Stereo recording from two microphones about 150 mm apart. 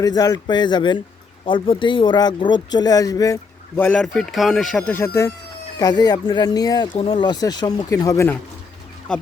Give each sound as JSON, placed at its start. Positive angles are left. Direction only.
{"t": 0.0, "sound": "speech", "side_deg": 25}
{"t": 3.8, "sound": "speech", "side_deg": 5}
{"t": 9.1, "sound": "speech", "side_deg": 5}